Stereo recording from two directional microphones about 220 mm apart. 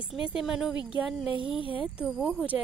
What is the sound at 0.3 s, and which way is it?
Speech, 5° right (ahead or behind).